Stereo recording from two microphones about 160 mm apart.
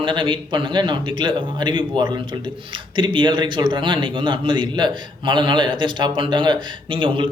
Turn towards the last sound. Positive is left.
turn(degrees=-30)  # may be behind; listen again after turning